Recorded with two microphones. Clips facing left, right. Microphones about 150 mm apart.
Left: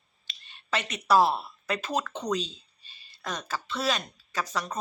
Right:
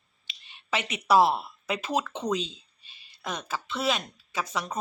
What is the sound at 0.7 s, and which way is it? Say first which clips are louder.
A woman's voice: even; 10° right (ahead or behind).